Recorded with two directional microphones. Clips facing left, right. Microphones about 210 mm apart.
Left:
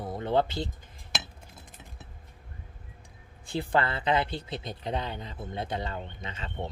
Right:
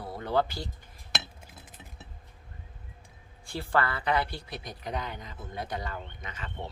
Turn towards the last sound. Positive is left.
turn(degrees=25)  # may be behind; listen again after turning